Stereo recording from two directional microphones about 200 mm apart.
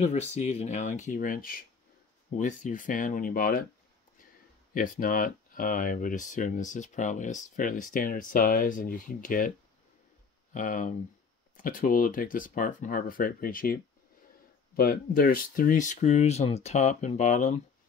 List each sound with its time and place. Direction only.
0.0 s speech: 35° left (ahead or behind)
4.7 s speech: 40° left (ahead or behind)
10.5 s speech: 40° left (ahead or behind)